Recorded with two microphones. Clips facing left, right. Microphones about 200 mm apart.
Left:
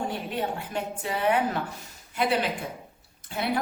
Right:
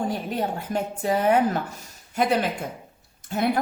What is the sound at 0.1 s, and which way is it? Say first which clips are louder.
A woman's voice: right 3 dB; 40° right (ahead or behind).